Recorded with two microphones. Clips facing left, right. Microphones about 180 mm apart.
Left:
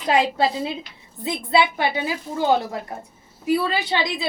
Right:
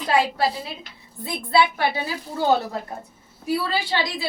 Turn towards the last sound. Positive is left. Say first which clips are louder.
# left 1 dB
turn(degrees=20)  # may be behind; listen again after turning